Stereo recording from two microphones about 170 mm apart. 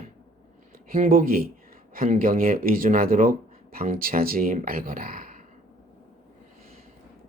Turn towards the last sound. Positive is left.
turn(degrees=-55)  # may be behind; listen again after turning